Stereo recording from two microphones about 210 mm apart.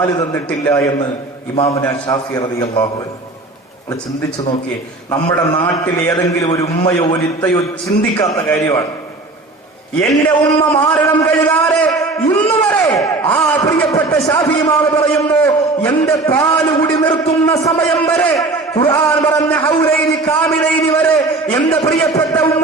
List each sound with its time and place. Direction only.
0.0 s a man's voice: 15° left (ahead or behind)
5.9 s a man's voice: 15° left (ahead or behind)
10.1 s a man's voice: 15° left (ahead or behind)